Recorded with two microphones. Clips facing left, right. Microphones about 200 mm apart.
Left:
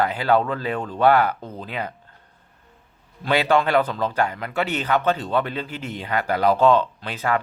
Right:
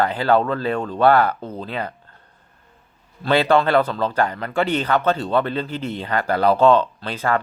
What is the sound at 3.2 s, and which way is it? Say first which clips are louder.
Speech: right 3 dB; 10° left (ahead or behind).